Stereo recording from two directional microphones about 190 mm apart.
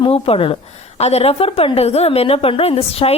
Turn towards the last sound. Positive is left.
turn(degrees=30)  # may be behind; listen again after turning